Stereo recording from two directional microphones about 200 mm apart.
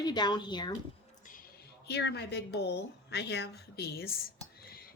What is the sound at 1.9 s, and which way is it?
A woman's voice, 55° left (ahead or behind).